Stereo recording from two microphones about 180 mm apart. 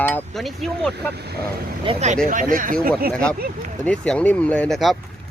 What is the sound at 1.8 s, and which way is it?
Speech, 35° right (ahead or behind).